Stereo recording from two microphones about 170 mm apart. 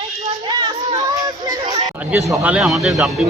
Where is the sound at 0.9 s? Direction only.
20° right (ahead or behind).